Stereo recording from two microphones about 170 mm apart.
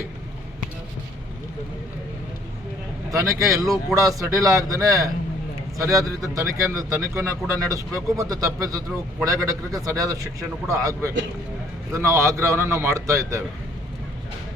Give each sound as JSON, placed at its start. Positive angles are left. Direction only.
{"t": 3.1, "sound": "a man's voice", "side_deg": -20}